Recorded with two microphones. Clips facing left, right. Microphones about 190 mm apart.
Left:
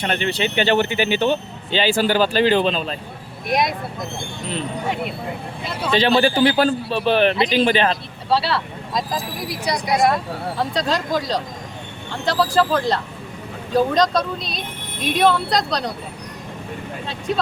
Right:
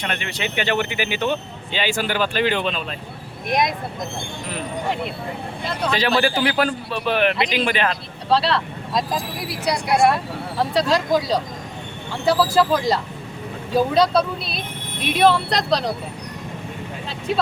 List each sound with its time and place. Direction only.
0.0 s speech: 30° left (ahead or behind)
3.4 s speech: centre (ahead or behind)
5.9 s a man's voice: 25° left (ahead or behind)
8.3 s speech: centre (ahead or behind)
17.1 s speech: 5° right (ahead or behind)